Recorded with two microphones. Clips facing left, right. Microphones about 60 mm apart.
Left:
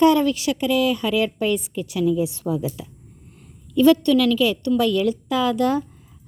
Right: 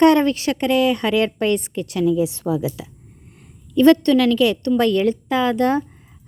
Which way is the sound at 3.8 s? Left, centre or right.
Right.